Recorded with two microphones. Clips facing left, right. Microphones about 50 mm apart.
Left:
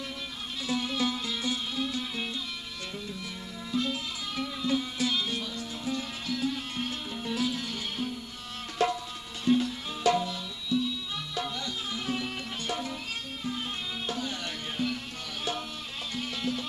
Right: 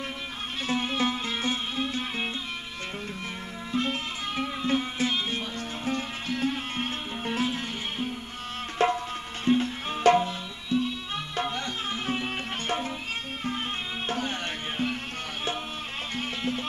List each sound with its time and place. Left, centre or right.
0.7 s music: right
3.7 s music: right
8.7 s tabla: right
11.3 s music: right
14.0 s music: right